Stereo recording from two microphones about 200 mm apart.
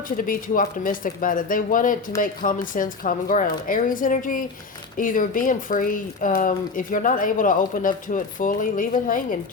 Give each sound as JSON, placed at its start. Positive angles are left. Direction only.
{"t": 0.2, "sound": "speech", "side_deg": 45}